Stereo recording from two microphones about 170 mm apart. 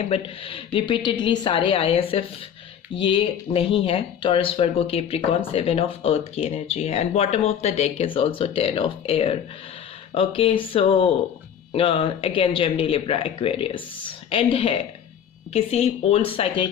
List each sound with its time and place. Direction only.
0.0 s speech: 35° left (ahead or behind)